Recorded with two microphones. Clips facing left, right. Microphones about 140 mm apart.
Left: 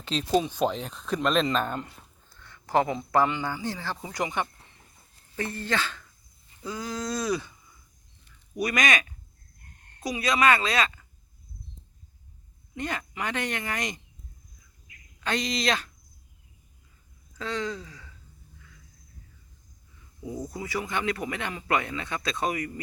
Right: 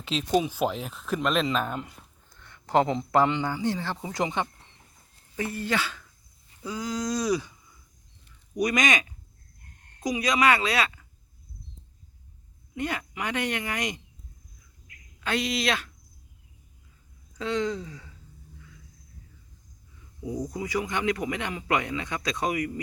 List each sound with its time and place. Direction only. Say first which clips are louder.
0.0 s speech: even; 5° right (ahead or behind)
2.3 s a sound: right 1 dB; 20° right (ahead or behind)
3.1 s speech: right 1 dB; 20° right (ahead or behind)
5.4 s a man's voice: right 1 dB; 10° right (ahead or behind)
8.5 s a man's voice: right 1 dB; 20° right (ahead or behind)
12.7 s a man's voice: right 2 dB; 10° right (ahead or behind)
15.2 s speech: right 1 dB; 5° right (ahead or behind)
17.3 s speech: right 4 dB; 20° right (ahead or behind)
20.2 s a man's voice: right 3 dB; 15° right (ahead or behind)